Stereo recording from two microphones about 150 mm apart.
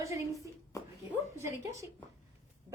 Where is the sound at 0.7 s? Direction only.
20° left (ahead or behind).